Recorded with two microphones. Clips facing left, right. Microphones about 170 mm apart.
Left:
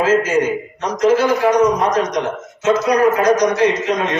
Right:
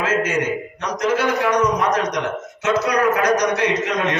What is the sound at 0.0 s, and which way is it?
A man's voice, 60° right (ahead or behind).